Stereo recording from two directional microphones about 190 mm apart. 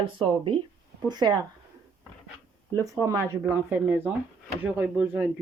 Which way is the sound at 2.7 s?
15° right (ahead or behind).